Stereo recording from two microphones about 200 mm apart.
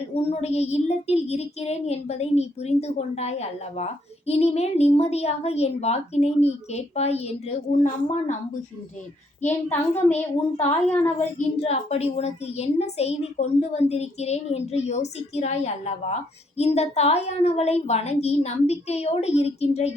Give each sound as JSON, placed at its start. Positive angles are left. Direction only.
{"t": 0.1, "sound": "speech", "side_deg": 30}
{"t": 9.5, "sound": "a child's voice", "side_deg": 10}
{"t": 10.3, "sound": "speech", "side_deg": 30}
{"t": 10.8, "sound": "a child's voice", "side_deg": 10}
{"t": 11.3, "sound": "speech", "side_deg": 30}